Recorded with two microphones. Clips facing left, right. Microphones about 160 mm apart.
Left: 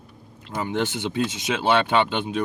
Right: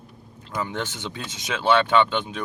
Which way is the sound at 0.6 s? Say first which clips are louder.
Left 5 dB; 15° left (ahead or behind).